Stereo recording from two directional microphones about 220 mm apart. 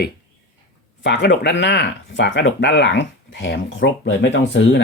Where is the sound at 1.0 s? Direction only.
50° left (ahead or behind).